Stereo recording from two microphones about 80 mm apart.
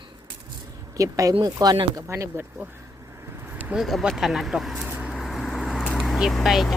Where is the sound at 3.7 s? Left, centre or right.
Centre.